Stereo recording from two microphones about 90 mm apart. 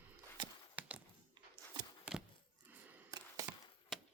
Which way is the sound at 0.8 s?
15° right (ahead or behind).